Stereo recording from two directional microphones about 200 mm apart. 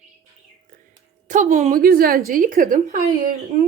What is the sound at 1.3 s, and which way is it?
A woman's voice, 40° right (ahead or behind).